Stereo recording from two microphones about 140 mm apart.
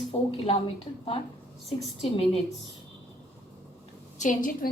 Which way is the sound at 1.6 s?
45° left (ahead or behind).